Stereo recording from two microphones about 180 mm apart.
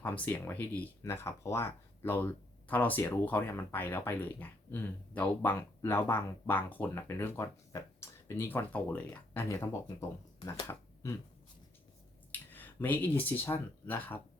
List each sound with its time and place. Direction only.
0.0 s speech: 10° left (ahead or behind)
12.3 s speech: 10° left (ahead or behind)